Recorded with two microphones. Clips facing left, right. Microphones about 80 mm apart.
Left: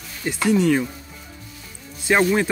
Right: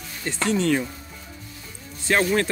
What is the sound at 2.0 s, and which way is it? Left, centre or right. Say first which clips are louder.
Speech: left 3 dB; centre.